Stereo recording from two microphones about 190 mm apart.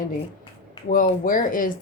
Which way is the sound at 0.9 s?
45° left (ahead or behind).